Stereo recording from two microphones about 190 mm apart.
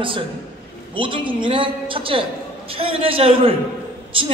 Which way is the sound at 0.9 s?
25° right (ahead or behind).